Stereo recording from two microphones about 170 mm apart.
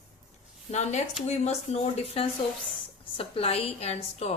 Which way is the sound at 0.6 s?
40° left (ahead or behind).